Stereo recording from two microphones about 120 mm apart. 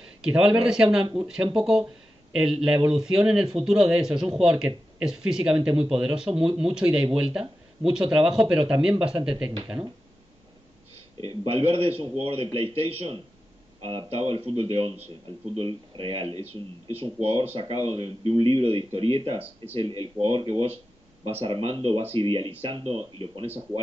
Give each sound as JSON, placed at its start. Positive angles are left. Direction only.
{"t": 0.2, "sound": "a man's voice", "side_deg": -5}
{"t": 11.2, "sound": "a man's voice", "side_deg": -55}